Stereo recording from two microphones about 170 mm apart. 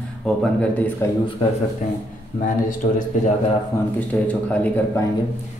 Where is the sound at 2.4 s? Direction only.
45° left (ahead or behind).